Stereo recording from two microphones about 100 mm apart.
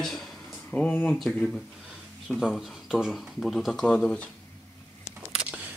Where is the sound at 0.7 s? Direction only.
15° left (ahead or behind).